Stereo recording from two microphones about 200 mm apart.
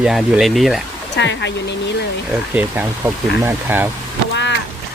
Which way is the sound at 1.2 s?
60° left (ahead or behind).